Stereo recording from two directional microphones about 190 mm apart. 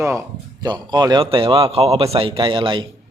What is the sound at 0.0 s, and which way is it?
Speech, 15° right (ahead or behind).